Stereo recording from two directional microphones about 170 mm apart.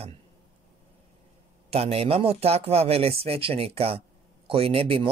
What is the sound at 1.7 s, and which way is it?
Speech, 35° right (ahead or behind).